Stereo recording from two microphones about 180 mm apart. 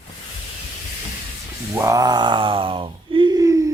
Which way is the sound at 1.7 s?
20° right (ahead or behind).